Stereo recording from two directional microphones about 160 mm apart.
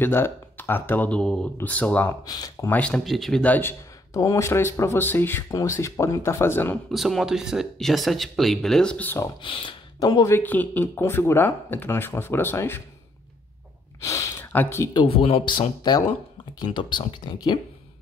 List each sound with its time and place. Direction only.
0.0 s a man's voice: 15° left (ahead or behind)
2.2 s speech: 25° left (ahead or behind)
2.7 s a man's voice: 5° left (ahead or behind)
6.9 s speech: centre (ahead or behind)
9.4 s speech: 30° left (ahead or behind)
10.3 s a man's voice: 10° left (ahead or behind)
14.0 s speech: 20° left (ahead or behind)
15.0 s speech: 35° left (ahead or behind)